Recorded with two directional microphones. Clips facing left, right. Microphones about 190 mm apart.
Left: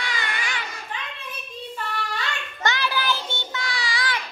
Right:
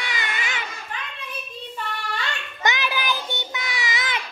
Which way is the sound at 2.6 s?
20° right (ahead or behind).